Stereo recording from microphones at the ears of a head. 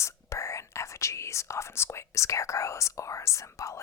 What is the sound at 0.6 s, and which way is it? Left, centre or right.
Speech, left.